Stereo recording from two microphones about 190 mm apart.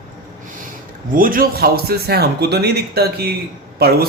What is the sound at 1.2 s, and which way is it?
Speech, 50° right (ahead or behind).